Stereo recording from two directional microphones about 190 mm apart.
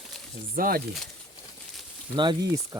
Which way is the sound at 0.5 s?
50° right (ahead or behind).